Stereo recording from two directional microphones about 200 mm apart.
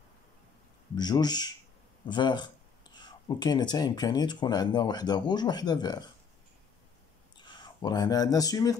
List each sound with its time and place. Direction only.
0.9 s speech: 20° left (ahead or behind)
7.3 s speech: 20° left (ahead or behind)